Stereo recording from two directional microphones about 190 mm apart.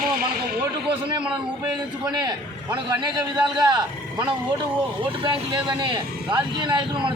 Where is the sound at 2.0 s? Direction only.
20° right (ahead or behind).